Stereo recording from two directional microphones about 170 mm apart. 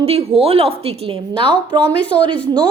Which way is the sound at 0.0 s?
35° right (ahead or behind).